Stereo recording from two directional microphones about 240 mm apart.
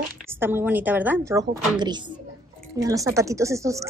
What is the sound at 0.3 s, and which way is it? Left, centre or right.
A woman's voice, centre.